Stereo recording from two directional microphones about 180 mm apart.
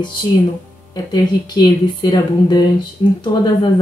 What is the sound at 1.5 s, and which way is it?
Speech, 20° left (ahead or behind).